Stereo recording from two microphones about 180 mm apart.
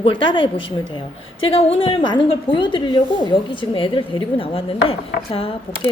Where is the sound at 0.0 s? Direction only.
25° left (ahead or behind).